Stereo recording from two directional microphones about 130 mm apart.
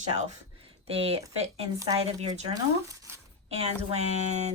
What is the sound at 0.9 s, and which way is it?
Speech, 50° right (ahead or behind).